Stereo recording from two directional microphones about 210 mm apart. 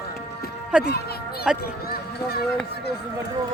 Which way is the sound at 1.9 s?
45° left (ahead or behind).